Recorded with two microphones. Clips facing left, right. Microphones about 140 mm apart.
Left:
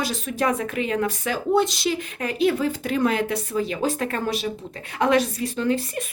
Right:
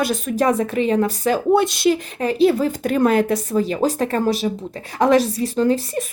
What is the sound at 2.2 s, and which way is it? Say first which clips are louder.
A woman's voice: right 5 dB; 35° right (ahead or behind).